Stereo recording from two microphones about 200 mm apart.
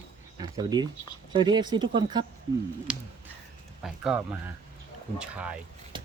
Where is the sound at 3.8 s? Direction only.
Centre (ahead or behind).